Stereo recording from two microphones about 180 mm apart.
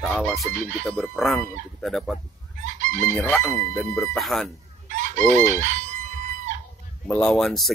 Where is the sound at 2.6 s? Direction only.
45° right (ahead or behind).